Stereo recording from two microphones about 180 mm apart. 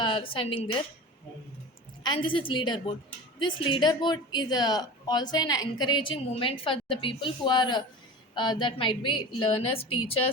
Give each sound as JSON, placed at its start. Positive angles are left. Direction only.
{"t": 0.0, "sound": "a woman's voice", "side_deg": 30}
{"t": 2.0, "sound": "a woman's voice", "side_deg": 30}